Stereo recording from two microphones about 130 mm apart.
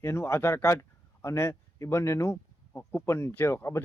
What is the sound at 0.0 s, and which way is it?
Speech, 20° left (ahead or behind).